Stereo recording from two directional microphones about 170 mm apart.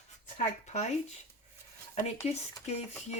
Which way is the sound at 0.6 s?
40° left (ahead or behind).